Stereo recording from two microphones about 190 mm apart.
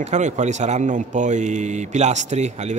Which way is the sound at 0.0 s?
40° right (ahead or behind).